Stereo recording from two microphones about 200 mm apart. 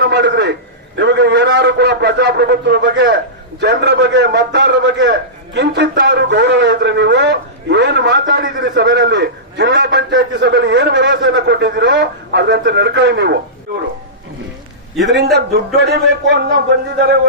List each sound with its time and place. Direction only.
0.0 s a sound: 60° right (ahead or behind)
0.9 s a man's voice: 60° right (ahead or behind)
15.1 s a man's voice: 55° right (ahead or behind)